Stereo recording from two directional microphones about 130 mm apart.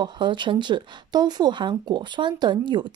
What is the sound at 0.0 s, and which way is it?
Speech, 35° right (ahead or behind).